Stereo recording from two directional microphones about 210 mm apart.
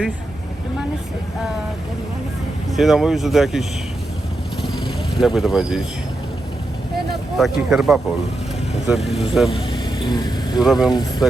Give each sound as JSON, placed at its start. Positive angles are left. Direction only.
{"t": 2.6, "sound": "speech", "side_deg": 0}
{"t": 5.2, "sound": "speech", "side_deg": 0}
{"t": 7.3, "sound": "speech", "side_deg": 0}
{"t": 9.5, "sound": "vehicle", "side_deg": 20}
{"t": 10.6, "sound": "speech", "side_deg": 0}